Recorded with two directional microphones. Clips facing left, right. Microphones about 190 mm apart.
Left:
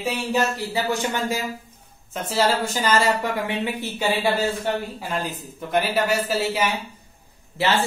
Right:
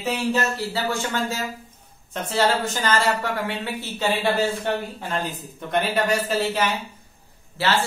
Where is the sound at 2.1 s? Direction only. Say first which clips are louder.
Even; 5° left (ahead or behind).